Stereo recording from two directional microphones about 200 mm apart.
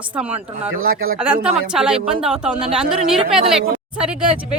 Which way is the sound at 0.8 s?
50° right (ahead or behind).